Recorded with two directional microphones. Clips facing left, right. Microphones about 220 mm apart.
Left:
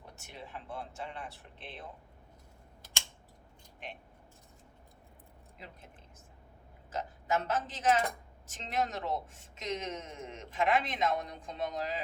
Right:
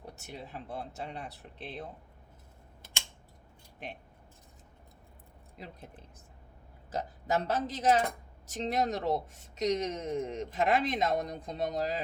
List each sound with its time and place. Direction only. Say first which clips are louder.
0.2 s speech: right 1 dB; 40° right (ahead or behind)
5.5 s speech: right 5 dB; 40° right (ahead or behind)
6.9 s speech: right 2 dB; 35° right (ahead or behind)